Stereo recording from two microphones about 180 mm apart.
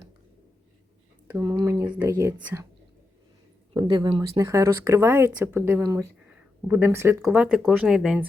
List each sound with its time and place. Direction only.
1.3 s speech: 20° right (ahead or behind)
3.8 s speech: 25° right (ahead or behind); by 8.3 s 5° right (ahead or behind)